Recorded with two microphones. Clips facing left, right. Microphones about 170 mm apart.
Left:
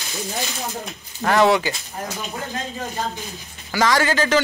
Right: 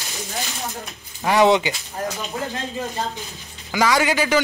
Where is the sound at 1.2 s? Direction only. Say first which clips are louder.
Right 1 dB; 15° right (ahead or behind).